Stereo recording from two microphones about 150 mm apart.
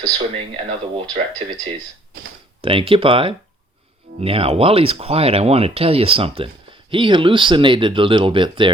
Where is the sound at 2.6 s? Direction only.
35° right (ahead or behind).